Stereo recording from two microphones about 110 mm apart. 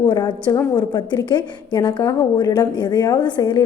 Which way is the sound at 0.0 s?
40° left (ahead or behind).